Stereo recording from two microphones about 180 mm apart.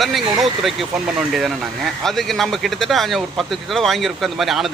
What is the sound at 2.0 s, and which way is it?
Speech, centre (ahead or behind).